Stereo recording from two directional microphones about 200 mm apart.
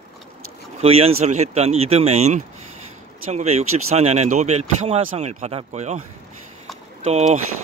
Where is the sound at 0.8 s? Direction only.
30° right (ahead or behind).